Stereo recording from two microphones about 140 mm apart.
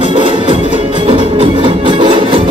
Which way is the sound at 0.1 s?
40° right (ahead or behind).